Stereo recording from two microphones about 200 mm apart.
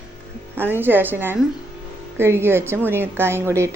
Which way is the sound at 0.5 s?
10° right (ahead or behind).